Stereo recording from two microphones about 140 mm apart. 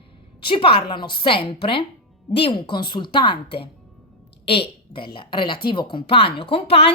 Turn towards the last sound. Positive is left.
turn(degrees=45)  # may be behind; listen again after turning